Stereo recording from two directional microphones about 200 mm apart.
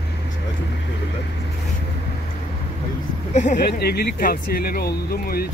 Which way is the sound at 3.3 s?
40° left (ahead or behind).